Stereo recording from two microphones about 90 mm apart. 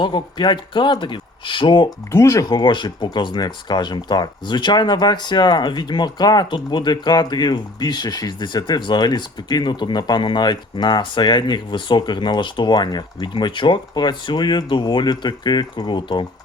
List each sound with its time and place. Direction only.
0.0 s speech: 60° left (ahead or behind)
2.1 s speech: 35° left (ahead or behind)
2.5 s speech: 55° left (ahead or behind)